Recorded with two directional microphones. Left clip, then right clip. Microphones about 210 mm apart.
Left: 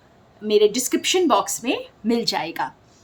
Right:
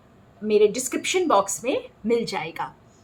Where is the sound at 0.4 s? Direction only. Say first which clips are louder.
Left 2 dB; 45° left (ahead or behind).